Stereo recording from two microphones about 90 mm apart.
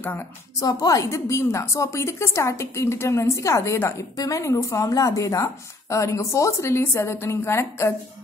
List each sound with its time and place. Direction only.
0.6 s a woman's voice: 40° left (ahead or behind)